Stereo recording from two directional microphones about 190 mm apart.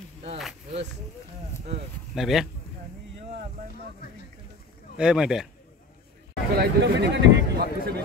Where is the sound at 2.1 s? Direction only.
Centre (ahead or behind).